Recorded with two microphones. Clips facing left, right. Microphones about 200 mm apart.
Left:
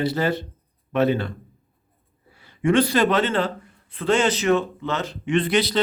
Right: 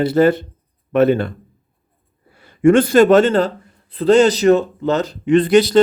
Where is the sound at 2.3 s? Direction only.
50° right (ahead or behind).